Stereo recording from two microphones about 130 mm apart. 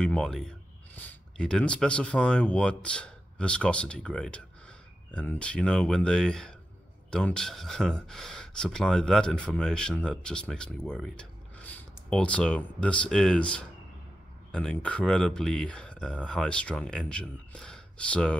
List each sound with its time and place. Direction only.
0.0 s a man's voice: 5° left (ahead or behind)